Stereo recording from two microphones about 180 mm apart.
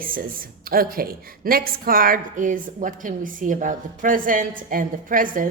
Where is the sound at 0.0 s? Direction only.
50° right (ahead or behind).